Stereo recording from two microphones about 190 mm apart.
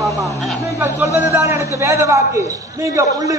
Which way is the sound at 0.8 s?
15° right (ahead or behind).